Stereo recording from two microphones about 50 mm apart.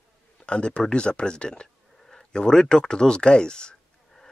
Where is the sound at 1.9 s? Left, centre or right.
Centre.